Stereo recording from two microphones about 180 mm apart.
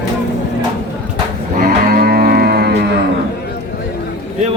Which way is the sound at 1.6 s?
55° right (ahead or behind).